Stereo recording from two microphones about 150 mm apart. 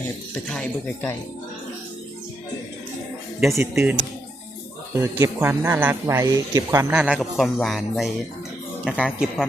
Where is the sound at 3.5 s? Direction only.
20° right (ahead or behind).